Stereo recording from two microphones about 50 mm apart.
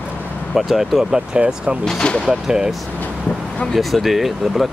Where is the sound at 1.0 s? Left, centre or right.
Centre.